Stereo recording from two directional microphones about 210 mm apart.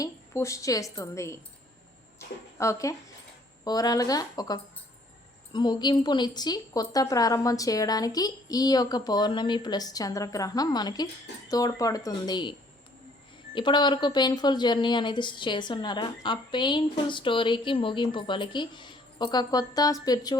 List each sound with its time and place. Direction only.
0.0 s a woman's voice: 15° left (ahead or behind)
2.6 s a woman's voice: 15° left (ahead or behind)